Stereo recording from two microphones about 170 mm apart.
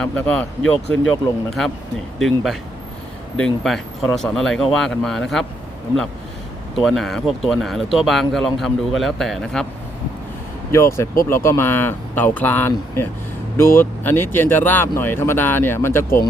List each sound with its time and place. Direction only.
0.0 s speech: 5° left (ahead or behind)
6.7 s speech: centre (ahead or behind)
10.7 s speech: 15° left (ahead or behind)